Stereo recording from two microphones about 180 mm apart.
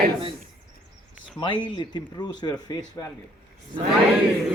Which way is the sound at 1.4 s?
25° left (ahead or behind).